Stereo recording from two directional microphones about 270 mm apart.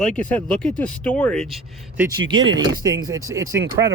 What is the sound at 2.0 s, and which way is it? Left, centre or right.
Speech, centre.